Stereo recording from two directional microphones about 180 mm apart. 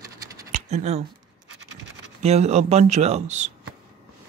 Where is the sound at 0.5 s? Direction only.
40° right (ahead or behind).